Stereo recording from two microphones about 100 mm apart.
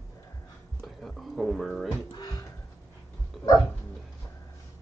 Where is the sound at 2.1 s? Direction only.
40° left (ahead or behind).